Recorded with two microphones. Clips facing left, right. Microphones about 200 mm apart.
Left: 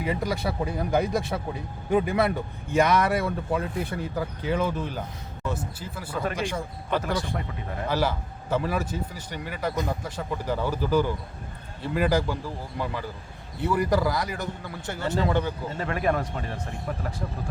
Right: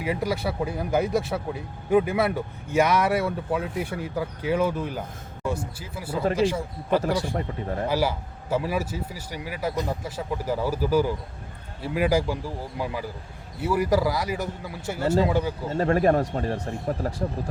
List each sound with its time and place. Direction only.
0.0 s speech: 5° right (ahead or behind)
7.0 s speech: 35° right (ahead or behind)
7.9 s speech: 10° right (ahead or behind)
15.7 s speech: 35° right (ahead or behind)